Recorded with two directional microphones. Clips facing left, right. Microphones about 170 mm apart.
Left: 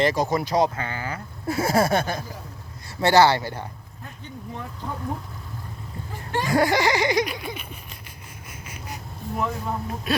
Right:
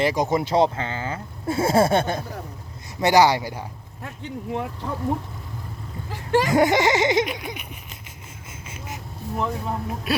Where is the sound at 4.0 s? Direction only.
75° right (ahead or behind).